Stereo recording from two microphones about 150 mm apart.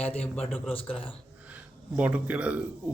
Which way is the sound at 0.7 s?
35° left (ahead or behind).